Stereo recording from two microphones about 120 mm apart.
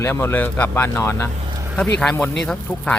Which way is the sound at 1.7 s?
10° left (ahead or behind).